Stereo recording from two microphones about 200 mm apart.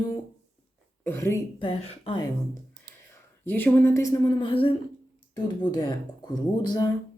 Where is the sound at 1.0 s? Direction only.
10° left (ahead or behind).